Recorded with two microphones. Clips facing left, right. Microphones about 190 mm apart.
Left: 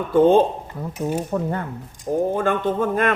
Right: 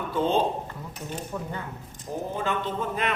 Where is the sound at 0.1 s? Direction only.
50° left (ahead or behind).